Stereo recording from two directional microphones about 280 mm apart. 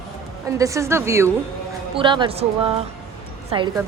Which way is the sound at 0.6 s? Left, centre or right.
Centre.